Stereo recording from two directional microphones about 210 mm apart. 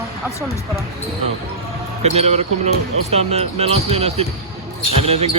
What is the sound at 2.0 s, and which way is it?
Speech, 30° right (ahead or behind).